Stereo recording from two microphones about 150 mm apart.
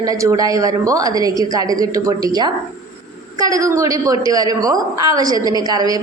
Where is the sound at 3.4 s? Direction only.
20° right (ahead or behind).